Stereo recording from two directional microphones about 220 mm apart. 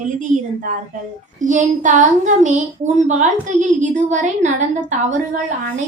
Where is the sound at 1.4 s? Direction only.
35° right (ahead or behind).